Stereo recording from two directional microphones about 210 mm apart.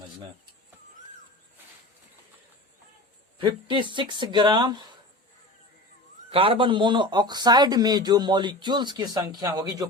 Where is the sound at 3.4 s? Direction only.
25° right (ahead or behind).